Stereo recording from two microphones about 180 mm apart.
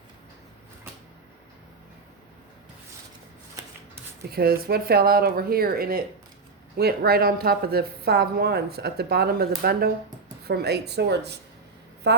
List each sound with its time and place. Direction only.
4.3 s a woman's voice: 60° right (ahead or behind)